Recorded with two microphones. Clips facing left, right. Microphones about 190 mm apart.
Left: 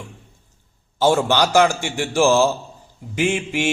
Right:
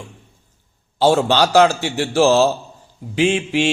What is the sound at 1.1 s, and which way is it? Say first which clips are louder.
A man's voice: right 2 dB; 10° left (ahead or behind).